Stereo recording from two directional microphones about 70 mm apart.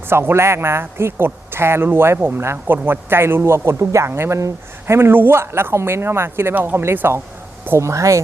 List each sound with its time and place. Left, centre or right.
0.1 s speech: right
7.8 s speech: right